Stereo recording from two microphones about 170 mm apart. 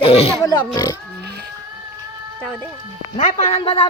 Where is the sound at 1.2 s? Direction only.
70° right (ahead or behind).